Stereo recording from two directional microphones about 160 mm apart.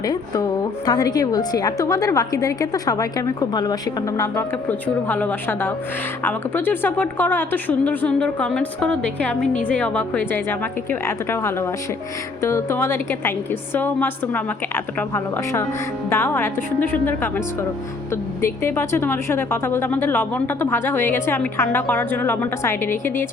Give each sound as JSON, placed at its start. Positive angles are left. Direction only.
{"t": 0.0, "sound": "a woman's voice", "side_deg": 25}